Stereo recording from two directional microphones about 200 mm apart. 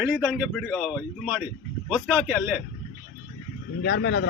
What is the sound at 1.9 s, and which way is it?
Speech, centre (ahead or behind).